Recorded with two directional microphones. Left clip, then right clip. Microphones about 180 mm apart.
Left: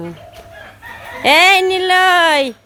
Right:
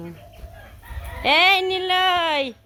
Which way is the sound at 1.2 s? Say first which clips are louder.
Left 7 dB; 20° left (ahead or behind).